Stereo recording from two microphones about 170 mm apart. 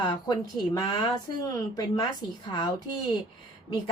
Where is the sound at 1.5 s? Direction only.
20° left (ahead or behind).